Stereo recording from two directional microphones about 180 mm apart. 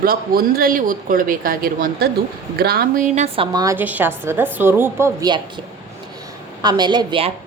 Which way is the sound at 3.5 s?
15° right (ahead or behind).